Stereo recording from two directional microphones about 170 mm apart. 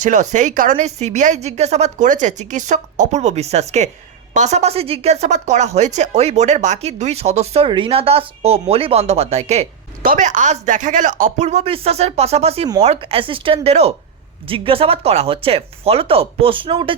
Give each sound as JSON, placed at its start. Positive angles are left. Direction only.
{"t": 0.0, "sound": "speech", "side_deg": -45}
{"t": 10.0, "sound": "speech", "side_deg": -50}